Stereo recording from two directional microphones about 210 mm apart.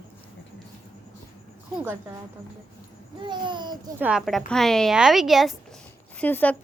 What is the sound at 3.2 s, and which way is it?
Babbling, 20° right (ahead or behind).